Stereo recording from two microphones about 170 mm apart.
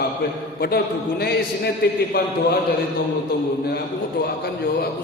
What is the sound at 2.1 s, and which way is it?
Speech, 60° left (ahead or behind).